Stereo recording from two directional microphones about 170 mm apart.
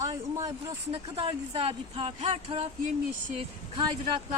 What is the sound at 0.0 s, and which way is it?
Vehicle, 20° right (ahead or behind).